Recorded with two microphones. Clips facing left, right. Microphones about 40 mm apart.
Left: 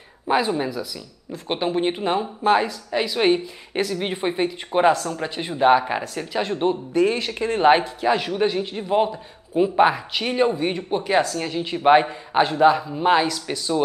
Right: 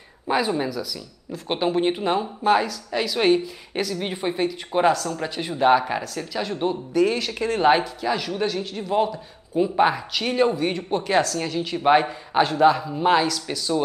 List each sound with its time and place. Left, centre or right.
0.3 s a man's voice: centre
1.7 s a man's voice: centre